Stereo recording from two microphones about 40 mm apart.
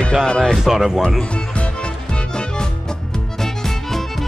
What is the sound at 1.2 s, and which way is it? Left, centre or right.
Music, left.